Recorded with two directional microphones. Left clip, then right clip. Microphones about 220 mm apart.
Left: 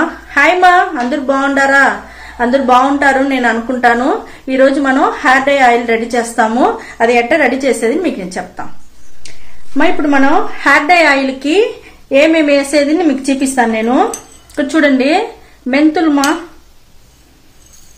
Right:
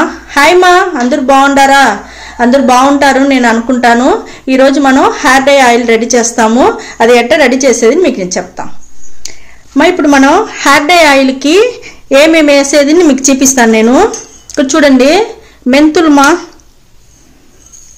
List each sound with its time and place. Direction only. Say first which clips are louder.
0.3 s speech: right 3 dB; 35° right (ahead or behind)
9.8 s speech: right 6 dB; 35° right (ahead or behind)